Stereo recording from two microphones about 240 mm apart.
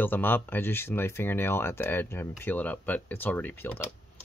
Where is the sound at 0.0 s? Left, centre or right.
Centre.